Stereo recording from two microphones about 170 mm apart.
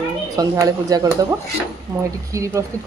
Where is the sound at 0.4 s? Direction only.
20° right (ahead or behind).